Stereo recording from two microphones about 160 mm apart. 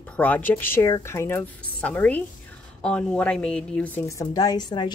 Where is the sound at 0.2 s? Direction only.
10° left (ahead or behind).